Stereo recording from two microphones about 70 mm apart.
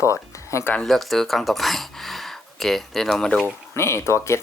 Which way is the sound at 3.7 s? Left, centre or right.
Left.